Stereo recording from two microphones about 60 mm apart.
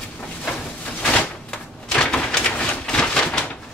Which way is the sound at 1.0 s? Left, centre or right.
Left.